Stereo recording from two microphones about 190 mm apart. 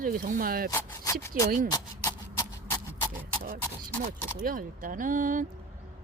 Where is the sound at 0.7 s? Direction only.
15° left (ahead or behind).